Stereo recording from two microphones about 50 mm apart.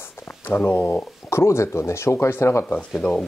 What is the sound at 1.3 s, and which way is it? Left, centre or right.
Speech, left.